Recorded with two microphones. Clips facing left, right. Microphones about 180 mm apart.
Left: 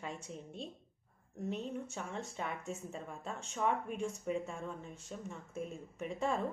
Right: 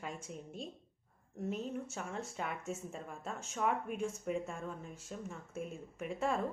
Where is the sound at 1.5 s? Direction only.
Centre (ahead or behind).